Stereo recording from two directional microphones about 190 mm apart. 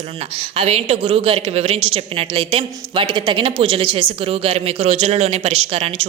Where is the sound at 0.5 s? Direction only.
35° right (ahead or behind).